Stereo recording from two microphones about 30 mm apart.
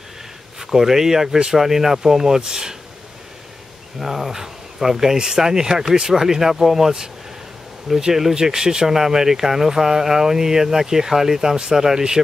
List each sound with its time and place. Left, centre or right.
0.6 s speech: centre
4.0 s speech: centre
8.1 s speech: centre